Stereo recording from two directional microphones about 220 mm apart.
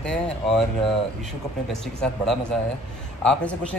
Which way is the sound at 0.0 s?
Centre (ahead or behind).